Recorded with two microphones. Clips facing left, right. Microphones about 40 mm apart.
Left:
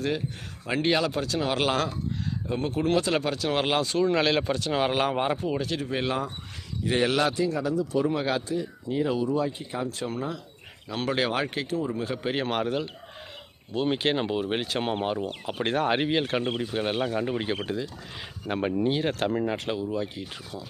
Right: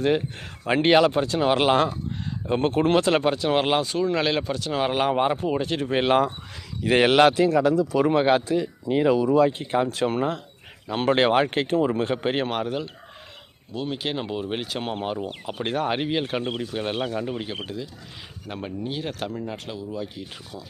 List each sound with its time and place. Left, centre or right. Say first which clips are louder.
0.6 s speech: right 7 dB; right
2.5 s speech: right 7 dB; right
2.8 s speech: right 3 dB; right; by 5.4 s centre
5.5 s speech: right 4 dB; right
6.8 s speech: right 7 dB; right
8.1 s speech: right 8 dB; right
8.4 s speech: right 6 dB; right
9.5 s speech: right 8 dB; right
10.8 s speech: right 7 dB; right
11.9 s speech: right 6 dB; right
12.5 s speech: even; centre
14.0 s speech: left 2 dB; centre
17.2 s speech: left 2 dB; centre
19.9 s speech: left 2 dB; centre